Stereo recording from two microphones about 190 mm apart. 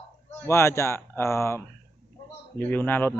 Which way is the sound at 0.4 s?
15° left (ahead or behind).